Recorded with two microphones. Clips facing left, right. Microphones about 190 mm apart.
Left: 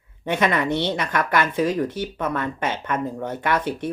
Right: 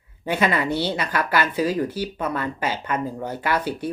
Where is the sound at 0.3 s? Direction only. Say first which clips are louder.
Left 1 dB; 5° right (ahead or behind).